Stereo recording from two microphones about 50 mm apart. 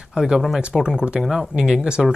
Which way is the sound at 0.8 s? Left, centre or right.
Centre.